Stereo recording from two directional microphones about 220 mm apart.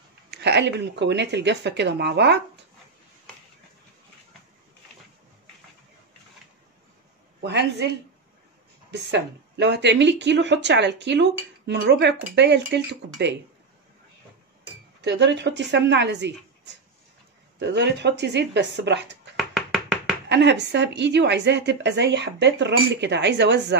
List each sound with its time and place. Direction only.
0.3 s a woman's voice: 50° right (ahead or behind)
7.4 s a woman's voice: 50° right (ahead or behind)
8.9 s a woman's voice: 50° right (ahead or behind)
15.0 s a woman's voice: 50° right (ahead or behind)
19.3 s hands: centre (ahead or behind)
20.2 s a woman's voice: 50° right (ahead or behind)